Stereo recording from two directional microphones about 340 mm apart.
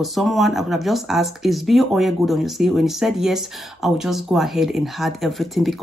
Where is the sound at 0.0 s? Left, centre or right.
Centre.